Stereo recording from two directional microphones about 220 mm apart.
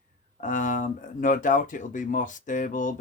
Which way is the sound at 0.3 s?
35° left (ahead or behind).